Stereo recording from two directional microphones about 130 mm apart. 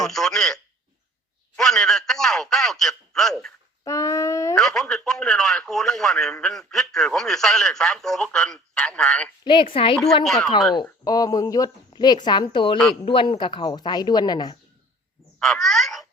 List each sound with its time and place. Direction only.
0.0 s a man's voice: 5° left (ahead or behind)
3.8 s a sound: 25° left (ahead or behind)
4.5 s speech: 5° left (ahead or behind)
9.4 s a woman's voice: 40° left (ahead or behind)
10.2 s speech: centre (ahead or behind)
11.0 s speech: 30° left (ahead or behind)
15.4 s a child's voice: 5° left (ahead or behind)